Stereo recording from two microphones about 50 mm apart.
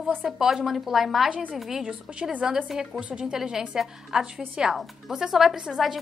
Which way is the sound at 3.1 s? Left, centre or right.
Centre.